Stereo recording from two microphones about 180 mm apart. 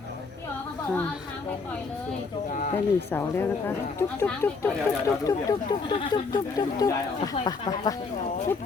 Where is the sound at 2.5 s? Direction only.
45° left (ahead or behind).